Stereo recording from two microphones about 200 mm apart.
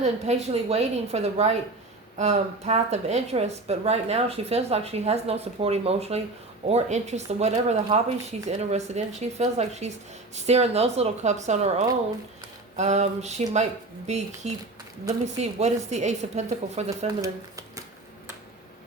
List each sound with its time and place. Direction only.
0.0 s a woman's voice: 35° right (ahead or behind)